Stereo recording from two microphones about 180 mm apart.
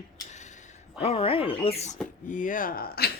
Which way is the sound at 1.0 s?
30° left (ahead or behind).